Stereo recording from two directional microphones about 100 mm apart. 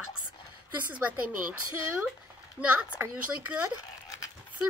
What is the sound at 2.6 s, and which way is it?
Speech, 15° right (ahead or behind).